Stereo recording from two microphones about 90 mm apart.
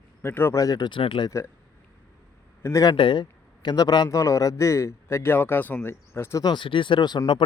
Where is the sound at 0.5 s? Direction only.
40° left (ahead or behind).